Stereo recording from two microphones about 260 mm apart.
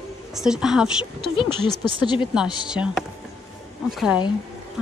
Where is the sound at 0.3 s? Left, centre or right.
Centre.